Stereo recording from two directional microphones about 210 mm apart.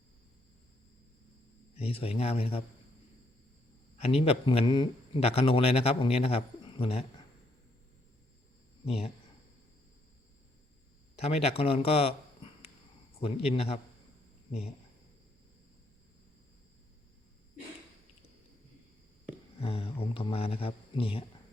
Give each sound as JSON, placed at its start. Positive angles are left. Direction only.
{"t": 1.7, "sound": "a man's voice", "side_deg": 30}
{"t": 3.9, "sound": "a man's voice", "side_deg": 30}
{"t": 8.8, "sound": "speech", "side_deg": 30}
{"t": 11.2, "sound": "a man's voice", "side_deg": 30}
{"t": 19.5, "sound": "speech", "side_deg": 30}